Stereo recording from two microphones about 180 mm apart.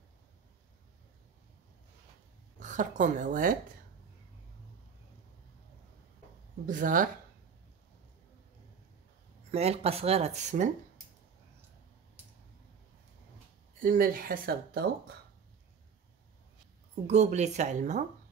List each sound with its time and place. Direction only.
2.6 s a woman's voice: 45° right (ahead or behind)
6.6 s speech: 45° right (ahead or behind)
9.5 s speech: 35° right (ahead or behind)
13.7 s speech: 50° right (ahead or behind)
17.0 s speech: 40° right (ahead or behind)